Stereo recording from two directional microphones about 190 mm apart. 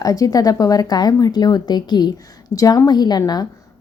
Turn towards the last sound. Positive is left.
turn(degrees=20)  # may be behind; listen again after turning